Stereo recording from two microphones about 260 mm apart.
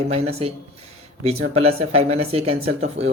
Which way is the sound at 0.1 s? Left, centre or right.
Right.